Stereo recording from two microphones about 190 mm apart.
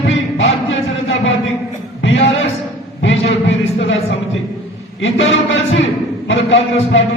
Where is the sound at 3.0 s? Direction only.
75° left (ahead or behind).